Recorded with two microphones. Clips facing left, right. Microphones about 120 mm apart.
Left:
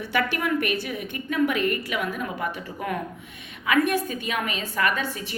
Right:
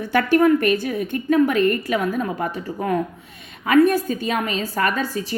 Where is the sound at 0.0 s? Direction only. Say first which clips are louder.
Right 9 dB; 45° right (ahead or behind).